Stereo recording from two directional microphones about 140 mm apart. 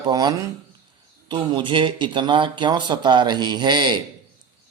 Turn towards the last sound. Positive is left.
turn(degrees=-30)  # may be behind; listen again after turning